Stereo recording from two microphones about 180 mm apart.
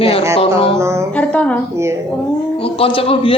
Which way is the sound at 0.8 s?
15° right (ahead or behind).